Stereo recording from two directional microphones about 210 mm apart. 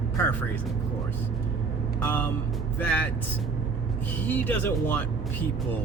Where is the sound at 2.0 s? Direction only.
10° left (ahead or behind).